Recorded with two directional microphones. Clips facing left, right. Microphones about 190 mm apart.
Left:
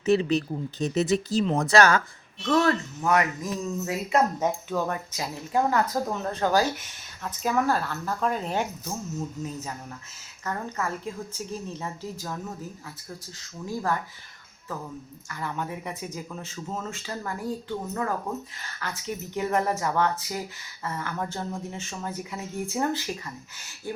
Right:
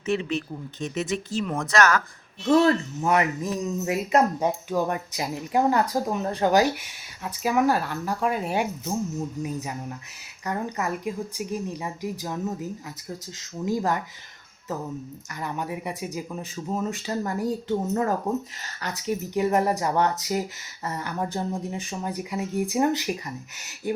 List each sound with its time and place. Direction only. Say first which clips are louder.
0.0 s speech: left 4 dB; 35° left (ahead or behind)
2.5 s speech: right 4 dB; 25° right (ahead or behind)
15.3 s speech: right 1 dB; 15° right (ahead or behind)
20.1 s speech: right 4 dB; 40° right (ahead or behind)
20.8 s speech: right 2 dB; 20° right (ahead or behind)